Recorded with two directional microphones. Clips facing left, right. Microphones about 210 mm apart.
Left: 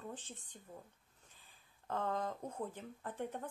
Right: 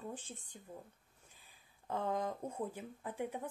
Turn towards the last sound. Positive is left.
turn(degrees=-10)  # may be behind; listen again after turning